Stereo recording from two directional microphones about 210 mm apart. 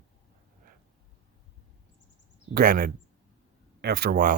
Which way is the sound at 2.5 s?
45° right (ahead or behind).